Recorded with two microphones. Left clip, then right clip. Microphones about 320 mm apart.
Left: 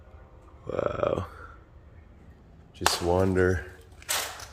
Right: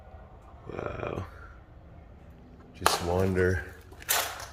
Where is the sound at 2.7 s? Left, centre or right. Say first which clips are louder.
Left 2 dB; centre.